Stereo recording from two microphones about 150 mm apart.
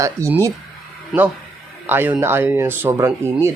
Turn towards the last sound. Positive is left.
turn(degrees=-20)  # may be behind; listen again after turning